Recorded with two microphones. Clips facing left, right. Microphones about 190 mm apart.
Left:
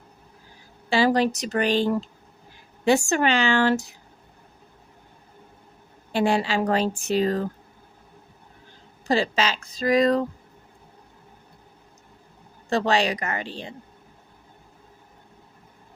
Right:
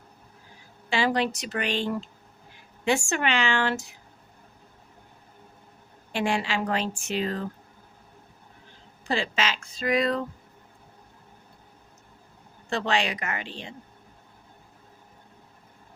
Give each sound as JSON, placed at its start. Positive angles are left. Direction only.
{"t": 0.9, "sound": "speech", "side_deg": 35}
{"t": 6.1, "sound": "speech", "side_deg": 35}
{"t": 9.0, "sound": "speech", "side_deg": 40}
{"t": 12.7, "sound": "speech", "side_deg": 40}